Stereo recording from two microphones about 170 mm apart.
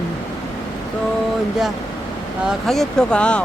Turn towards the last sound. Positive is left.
turn(degrees=5)  # may be behind; listen again after turning